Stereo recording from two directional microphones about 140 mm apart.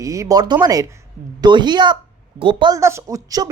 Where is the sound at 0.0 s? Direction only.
25° right (ahead or behind).